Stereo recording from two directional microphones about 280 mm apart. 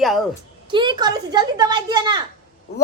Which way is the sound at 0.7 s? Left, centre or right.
Centre.